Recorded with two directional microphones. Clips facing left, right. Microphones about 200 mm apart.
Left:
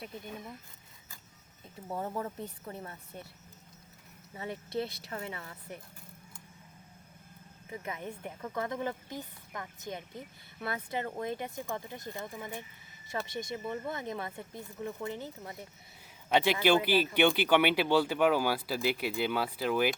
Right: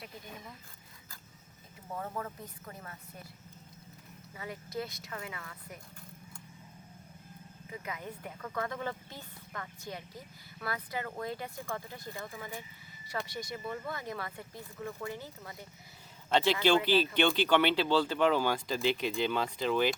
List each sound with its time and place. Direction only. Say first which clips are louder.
1.9 s speech: left 3 dB; 25° left (ahead or behind)
4.4 s speech: left 4 dB; 30° left (ahead or behind)
7.7 s speech: left 2 dB; 25° left (ahead or behind); by 19.9 s 10° left (ahead or behind)